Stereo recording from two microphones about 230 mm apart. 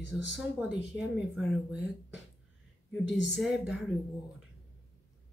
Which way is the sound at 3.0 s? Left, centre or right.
Left.